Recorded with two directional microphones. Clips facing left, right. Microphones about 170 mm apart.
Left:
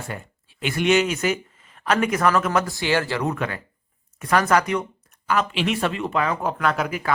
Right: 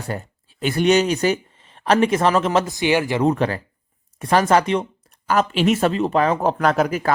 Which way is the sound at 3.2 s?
35° right (ahead or behind).